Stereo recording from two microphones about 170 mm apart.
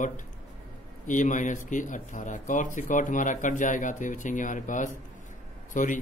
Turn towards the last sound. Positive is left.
turn(degrees=50)  # may be behind; listen again after turning